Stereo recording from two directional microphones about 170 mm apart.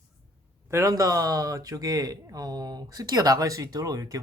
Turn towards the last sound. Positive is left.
turn(degrees=-20)  # may be behind; listen again after turning